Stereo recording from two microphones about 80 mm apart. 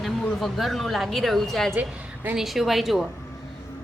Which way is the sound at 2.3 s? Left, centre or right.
Centre.